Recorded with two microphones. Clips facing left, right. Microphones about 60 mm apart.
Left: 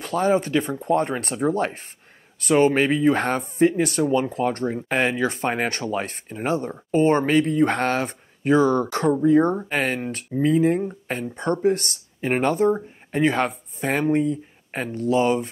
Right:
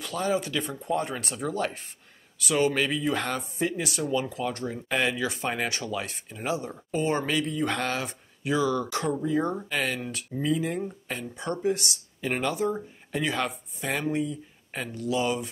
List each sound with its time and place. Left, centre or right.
0.0 s speech: left